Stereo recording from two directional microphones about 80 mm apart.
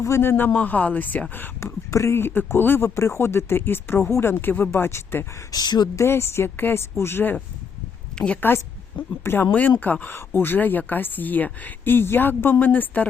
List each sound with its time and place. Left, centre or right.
0.0 s speech: left
1.6 s speech: left
5.5 s speech: left
6.0 s speech: left
8.2 s speech: centre